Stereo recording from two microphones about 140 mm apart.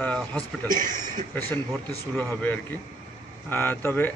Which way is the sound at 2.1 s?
15° left (ahead or behind).